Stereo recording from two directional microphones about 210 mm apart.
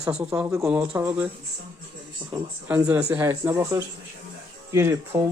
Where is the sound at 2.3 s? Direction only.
20° right (ahead or behind).